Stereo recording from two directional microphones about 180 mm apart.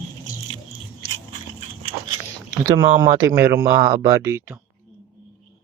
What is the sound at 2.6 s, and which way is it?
Speech, 20° right (ahead or behind).